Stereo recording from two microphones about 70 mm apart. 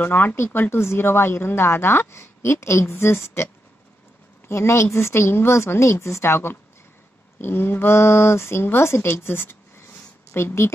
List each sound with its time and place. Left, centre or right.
0.0 s speech: left
4.5 s speech: left